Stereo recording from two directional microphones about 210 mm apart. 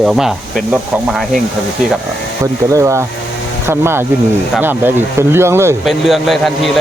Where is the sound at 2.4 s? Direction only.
15° right (ahead or behind).